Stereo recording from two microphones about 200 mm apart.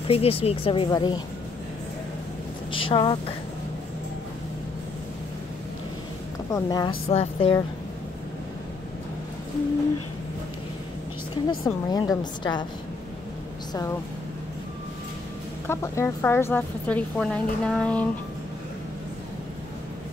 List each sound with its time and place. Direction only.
0.1 s speech: 30° left (ahead or behind)
2.7 s speech: 25° left (ahead or behind)
6.5 s speech: 20° left (ahead or behind)
11.6 s speech: 20° left (ahead or behind)
15.6 s a woman's voice: 15° left (ahead or behind)